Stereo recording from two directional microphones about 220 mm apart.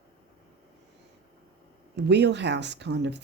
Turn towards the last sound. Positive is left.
turn(degrees=-50)  # may be behind; listen again after turning